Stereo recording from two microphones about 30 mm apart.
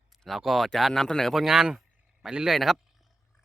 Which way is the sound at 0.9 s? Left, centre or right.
Centre.